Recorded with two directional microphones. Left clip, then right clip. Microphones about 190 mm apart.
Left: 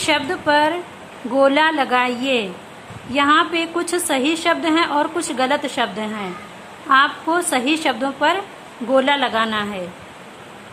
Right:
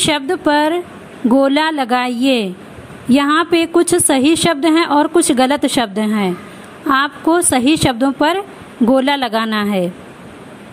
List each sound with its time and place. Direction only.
0.0 s a woman's voice: 35° right (ahead or behind)